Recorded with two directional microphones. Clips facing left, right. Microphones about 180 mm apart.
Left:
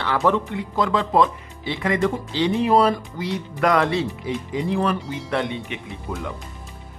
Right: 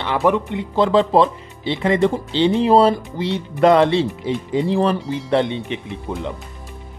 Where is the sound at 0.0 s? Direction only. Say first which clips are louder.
Right 2 dB; 20° right (ahead or behind).